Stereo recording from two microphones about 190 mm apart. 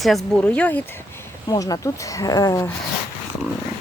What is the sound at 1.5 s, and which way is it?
Speech, 20° left (ahead or behind).